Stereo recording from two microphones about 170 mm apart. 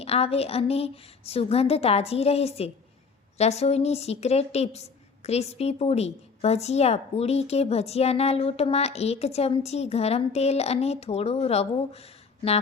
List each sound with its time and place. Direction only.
0.0 s speech: 35° left (ahead or behind)